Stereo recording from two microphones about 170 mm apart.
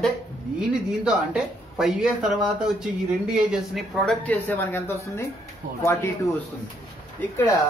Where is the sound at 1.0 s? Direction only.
5° right (ahead or behind).